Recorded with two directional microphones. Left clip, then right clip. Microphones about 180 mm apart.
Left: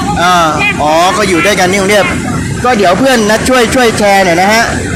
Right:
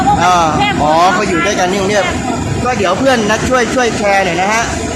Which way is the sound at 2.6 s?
30° left (ahead or behind).